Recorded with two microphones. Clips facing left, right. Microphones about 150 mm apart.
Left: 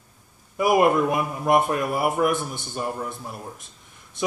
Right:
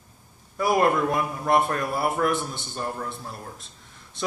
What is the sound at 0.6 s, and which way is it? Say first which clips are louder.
Speech: left 3 dB; 15° left (ahead or behind).